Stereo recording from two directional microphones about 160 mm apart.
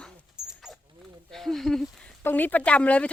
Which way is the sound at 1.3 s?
Centre (ahead or behind).